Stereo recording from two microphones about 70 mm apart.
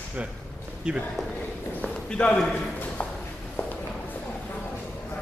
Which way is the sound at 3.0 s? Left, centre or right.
Left.